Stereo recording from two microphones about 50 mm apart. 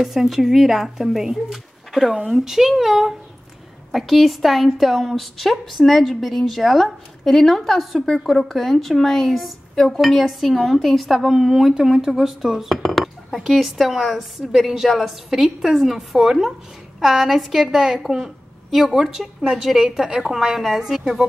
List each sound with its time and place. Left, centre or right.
0.0 s a woman's voice: centre
18.0 s a sound: centre
18.9 s a woman's voice: centre